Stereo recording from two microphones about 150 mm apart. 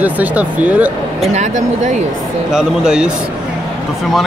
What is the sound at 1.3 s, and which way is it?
Speech, 55° right (ahead or behind).